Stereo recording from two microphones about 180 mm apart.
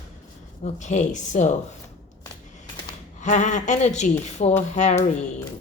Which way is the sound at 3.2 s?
40° left (ahead or behind).